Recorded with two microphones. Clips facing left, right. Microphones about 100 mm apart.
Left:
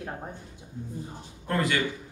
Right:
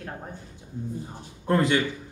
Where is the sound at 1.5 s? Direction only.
25° right (ahead or behind).